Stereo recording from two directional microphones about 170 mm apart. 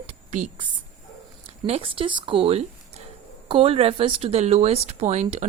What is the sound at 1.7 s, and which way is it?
A woman's voice, 30° right (ahead or behind).